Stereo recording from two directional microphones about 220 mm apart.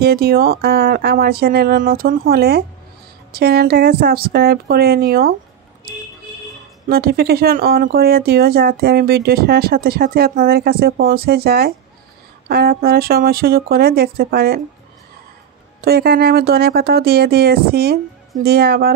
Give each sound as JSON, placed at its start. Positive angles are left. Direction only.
{"t": 0.0, "sound": "speech", "side_deg": -45}
{"t": 6.9, "sound": "speech", "side_deg": -45}
{"t": 15.8, "sound": "speech", "side_deg": -45}